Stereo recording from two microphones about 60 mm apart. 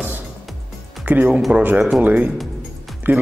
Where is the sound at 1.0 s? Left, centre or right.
Right.